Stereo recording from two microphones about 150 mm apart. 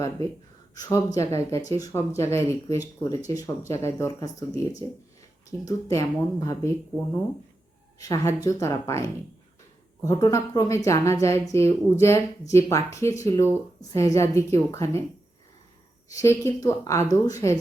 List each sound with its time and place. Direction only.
0.8 s a woman's voice: 20° left (ahead or behind)
7.9 s a woman's voice: 20° left (ahead or behind)
16.0 s a woman's voice: 20° left (ahead or behind)